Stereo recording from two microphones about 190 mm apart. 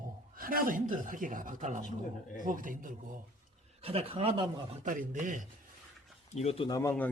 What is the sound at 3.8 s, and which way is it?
Speech, 30° right (ahead or behind).